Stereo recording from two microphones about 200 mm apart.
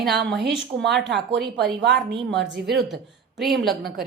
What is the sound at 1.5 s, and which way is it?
Speech, 60° right (ahead or behind).